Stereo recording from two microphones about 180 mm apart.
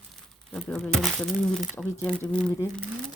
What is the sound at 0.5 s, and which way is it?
Speech, 5° left (ahead or behind).